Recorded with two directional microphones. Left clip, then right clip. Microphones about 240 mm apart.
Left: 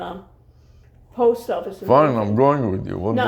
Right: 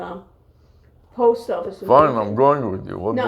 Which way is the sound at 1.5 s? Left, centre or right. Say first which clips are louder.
Even; left.